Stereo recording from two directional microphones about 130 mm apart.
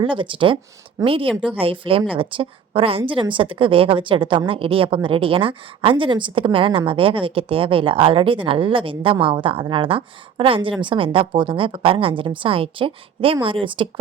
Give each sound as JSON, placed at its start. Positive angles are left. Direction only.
{"t": 0.0, "sound": "a woman's voice", "side_deg": -40}